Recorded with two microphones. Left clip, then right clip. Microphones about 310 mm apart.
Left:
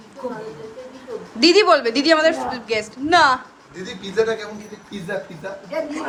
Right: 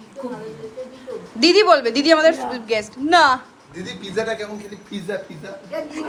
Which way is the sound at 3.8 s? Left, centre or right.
Right.